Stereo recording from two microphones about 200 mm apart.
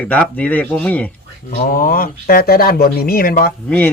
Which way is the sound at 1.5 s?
40° left (ahead or behind).